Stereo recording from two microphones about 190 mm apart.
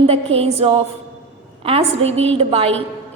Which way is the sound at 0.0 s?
30° right (ahead or behind).